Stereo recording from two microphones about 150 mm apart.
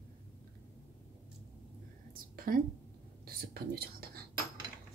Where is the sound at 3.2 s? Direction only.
90° right.